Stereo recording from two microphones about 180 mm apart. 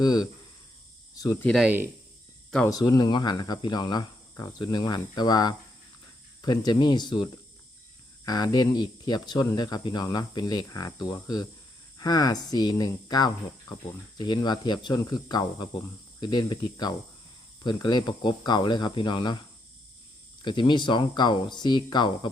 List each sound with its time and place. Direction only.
0.0 s speech: 20° left (ahead or behind)
1.5 s speech: centre (ahead or behind)
2.6 s speech: 20° left (ahead or behind)
20.4 s speech: 25° left (ahead or behind)